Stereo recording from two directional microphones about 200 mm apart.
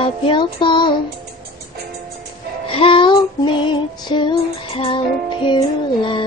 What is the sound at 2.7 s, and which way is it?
Female singing, 25° left (ahead or behind).